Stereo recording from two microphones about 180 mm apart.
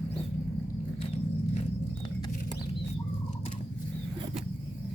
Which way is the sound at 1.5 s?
30° left (ahead or behind).